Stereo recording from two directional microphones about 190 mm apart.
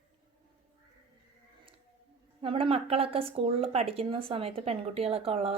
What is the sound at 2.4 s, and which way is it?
A woman's voice, 30° right (ahead or behind).